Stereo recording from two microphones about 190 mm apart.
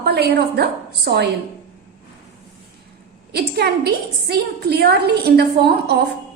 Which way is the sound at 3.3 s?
55° right (ahead or behind).